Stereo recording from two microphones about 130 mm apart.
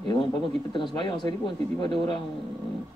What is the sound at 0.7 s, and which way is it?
Speech, 35° left (ahead or behind).